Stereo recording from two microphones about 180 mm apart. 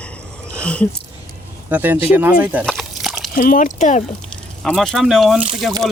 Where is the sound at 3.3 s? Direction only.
50° left (ahead or behind).